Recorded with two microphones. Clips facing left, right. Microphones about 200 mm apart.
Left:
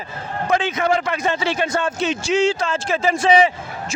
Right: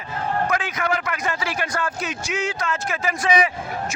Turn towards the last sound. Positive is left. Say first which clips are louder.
# left 6 dB
turn(degrees=25)  # may be behind; listen again after turning